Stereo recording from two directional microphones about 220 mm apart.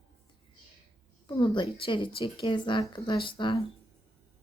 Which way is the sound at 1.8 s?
25° left (ahead or behind).